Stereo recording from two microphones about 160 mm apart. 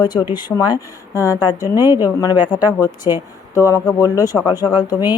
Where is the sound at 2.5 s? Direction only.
25° left (ahead or behind).